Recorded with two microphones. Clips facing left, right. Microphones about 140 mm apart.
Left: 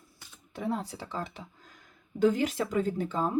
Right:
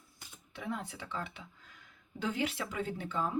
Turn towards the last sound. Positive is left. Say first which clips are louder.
# left 6 dB
turn(degrees=40)  # may be behind; listen again after turning